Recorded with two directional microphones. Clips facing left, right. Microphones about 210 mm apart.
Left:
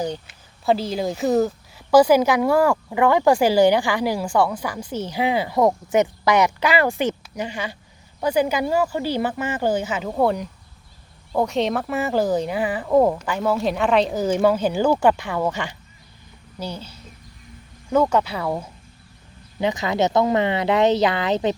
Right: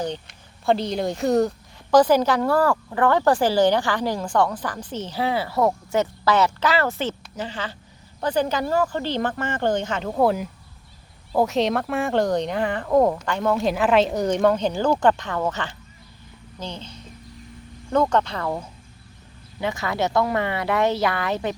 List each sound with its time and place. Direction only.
0.0 s speech: 5° left (ahead or behind)
19.5 s speech: 20° left (ahead or behind)